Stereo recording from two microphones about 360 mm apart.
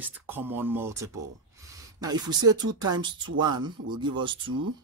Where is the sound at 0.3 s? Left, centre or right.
Centre.